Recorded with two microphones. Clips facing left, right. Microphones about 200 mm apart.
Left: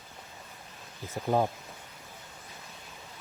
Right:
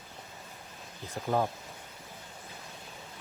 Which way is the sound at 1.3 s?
15° left (ahead or behind).